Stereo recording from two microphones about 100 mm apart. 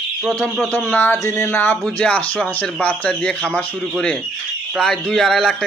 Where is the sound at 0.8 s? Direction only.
15° left (ahead or behind).